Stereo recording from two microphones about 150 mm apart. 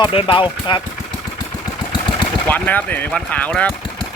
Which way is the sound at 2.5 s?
10° left (ahead or behind).